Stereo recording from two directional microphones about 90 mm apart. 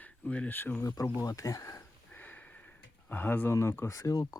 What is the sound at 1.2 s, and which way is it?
Speech, 40° left (ahead or behind).